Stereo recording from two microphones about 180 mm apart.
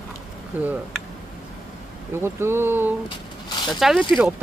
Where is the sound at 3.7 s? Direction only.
Centre (ahead or behind).